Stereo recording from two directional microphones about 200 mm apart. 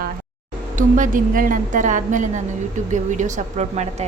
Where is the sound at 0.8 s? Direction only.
40° right (ahead or behind).